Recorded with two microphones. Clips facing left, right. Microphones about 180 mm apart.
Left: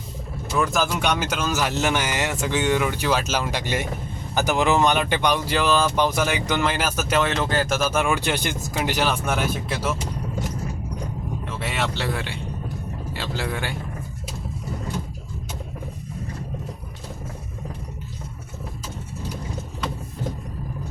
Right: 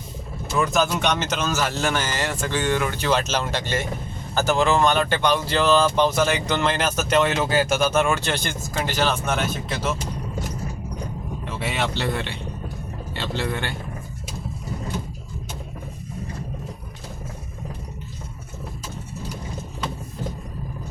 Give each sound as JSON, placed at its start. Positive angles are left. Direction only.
{"t": 0.5, "sound": "speech", "side_deg": 5}
{"t": 7.3, "sound": "speech", "side_deg": -5}
{"t": 11.4, "sound": "speech", "side_deg": 0}